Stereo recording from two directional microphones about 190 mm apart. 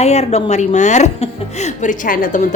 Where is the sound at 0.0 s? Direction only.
35° left (ahead or behind).